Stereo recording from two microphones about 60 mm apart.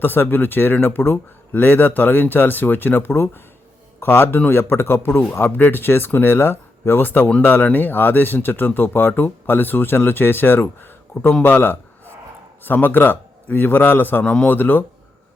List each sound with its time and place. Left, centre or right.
0.0 s speech: left
11.4 s a sound: left
12.6 s speech: left